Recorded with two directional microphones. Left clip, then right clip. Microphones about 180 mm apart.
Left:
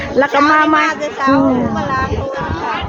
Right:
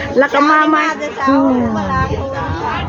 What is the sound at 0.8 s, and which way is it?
A woman's voice, 60° left (ahead or behind).